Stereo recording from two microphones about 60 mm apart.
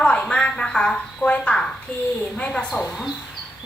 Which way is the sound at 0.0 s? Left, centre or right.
Centre.